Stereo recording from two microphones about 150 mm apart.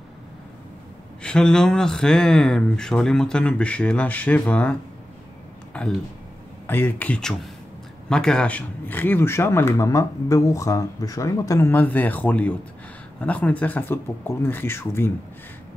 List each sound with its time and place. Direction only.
1.2 s speech: 5° left (ahead or behind)
5.7 s a sound: 5° left (ahead or behind)
6.7 s speech: 15° left (ahead or behind)